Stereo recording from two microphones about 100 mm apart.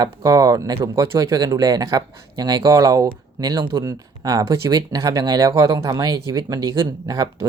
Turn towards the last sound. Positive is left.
turn(degrees=-40)  # may be behind; listen again after turning